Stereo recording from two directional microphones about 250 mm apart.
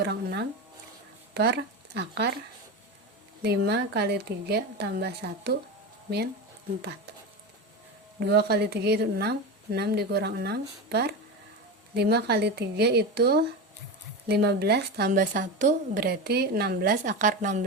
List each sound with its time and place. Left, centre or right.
0.0 s a woman's voice: right
3.4 s a woman's voice: right
8.2 s a woman's voice: right